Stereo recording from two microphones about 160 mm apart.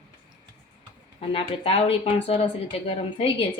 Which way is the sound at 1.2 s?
35° left (ahead or behind).